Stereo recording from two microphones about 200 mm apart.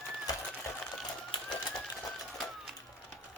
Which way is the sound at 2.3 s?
Centre (ahead or behind).